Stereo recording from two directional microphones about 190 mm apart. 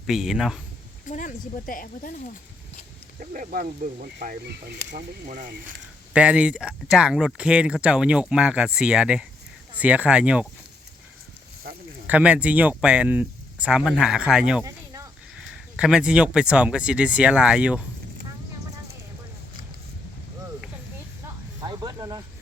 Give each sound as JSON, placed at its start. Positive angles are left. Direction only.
{"t": 0.1, "sound": "speech", "side_deg": 0}
{"t": 1.0, "sound": "speech", "side_deg": 45}
{"t": 3.3, "sound": "speech", "side_deg": -45}
{"t": 6.1, "sound": "speech", "side_deg": -5}
{"t": 12.0, "sound": "speech", "side_deg": -5}
{"t": 21.7, "sound": "a sound", "side_deg": -20}